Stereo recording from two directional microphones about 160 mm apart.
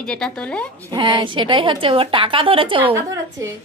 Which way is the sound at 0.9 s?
30° right (ahead or behind).